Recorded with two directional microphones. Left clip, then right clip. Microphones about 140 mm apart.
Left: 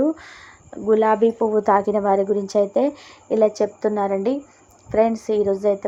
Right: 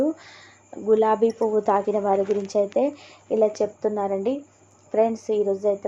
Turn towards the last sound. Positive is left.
turn(degrees=55)  # may be behind; listen again after turning